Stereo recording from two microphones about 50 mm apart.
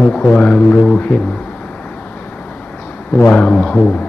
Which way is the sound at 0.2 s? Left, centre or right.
Left.